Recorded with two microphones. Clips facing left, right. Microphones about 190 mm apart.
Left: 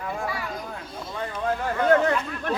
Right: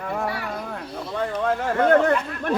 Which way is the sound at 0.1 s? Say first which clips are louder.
Right 4 dB; 65° right (ahead or behind).